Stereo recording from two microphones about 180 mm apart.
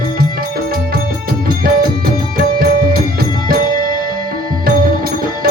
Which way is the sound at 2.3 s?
55° right (ahead or behind).